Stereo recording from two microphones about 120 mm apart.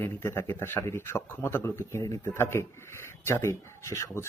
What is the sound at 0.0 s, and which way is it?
Speech, 20° left (ahead or behind).